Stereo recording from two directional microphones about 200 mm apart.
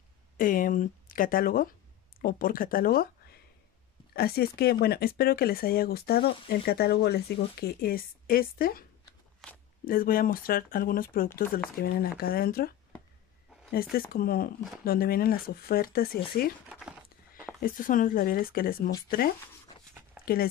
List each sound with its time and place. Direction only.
0.4 s speech: 45° left (ahead or behind)
9.8 s speech: 45° left (ahead or behind)
13.7 s speech: 50° left (ahead or behind)
17.6 s speech: 45° left (ahead or behind)